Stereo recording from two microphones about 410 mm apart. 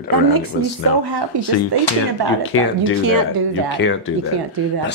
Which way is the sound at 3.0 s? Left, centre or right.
Right.